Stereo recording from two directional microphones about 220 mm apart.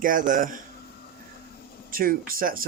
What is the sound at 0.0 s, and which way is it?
Speech, 35° right (ahead or behind).